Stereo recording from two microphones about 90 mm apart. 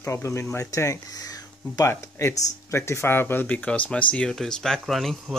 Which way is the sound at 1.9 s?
30° left (ahead or behind).